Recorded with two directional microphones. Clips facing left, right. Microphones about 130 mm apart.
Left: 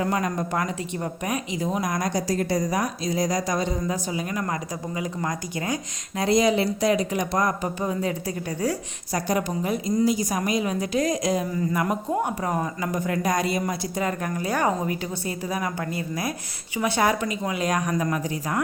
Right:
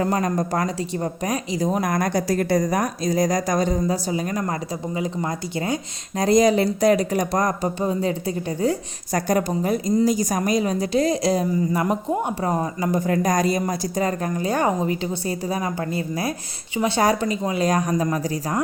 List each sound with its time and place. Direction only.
0.0 s a woman's voice: 40° right (ahead or behind)
1.8 s a woman's voice: 55° right (ahead or behind); by 6.2 s 30° right (ahead or behind)
6.2 s a woman's voice: 45° right (ahead or behind)
7.8 s a woman's voice: 30° right (ahead or behind)
9.1 s a woman's voice: 45° right (ahead or behind); by 11.9 s 30° right (ahead or behind)
12.0 s a woman's voice: 20° right (ahead or behind)